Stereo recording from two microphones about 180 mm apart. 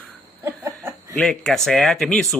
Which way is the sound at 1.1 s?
5° left (ahead or behind).